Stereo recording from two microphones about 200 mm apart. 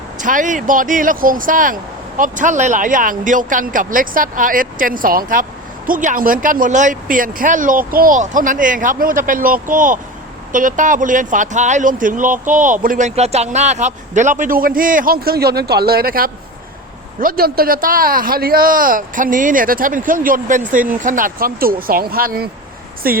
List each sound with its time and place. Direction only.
0.2 s speech: 40° right (ahead or behind)